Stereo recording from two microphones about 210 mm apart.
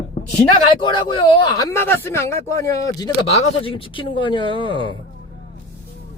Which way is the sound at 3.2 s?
25° left (ahead or behind).